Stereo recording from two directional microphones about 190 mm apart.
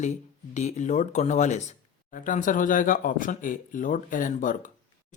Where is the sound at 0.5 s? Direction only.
40° left (ahead or behind).